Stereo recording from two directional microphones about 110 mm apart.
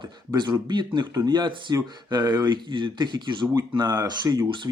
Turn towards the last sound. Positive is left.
turn(degrees=-40)  # may be behind; listen again after turning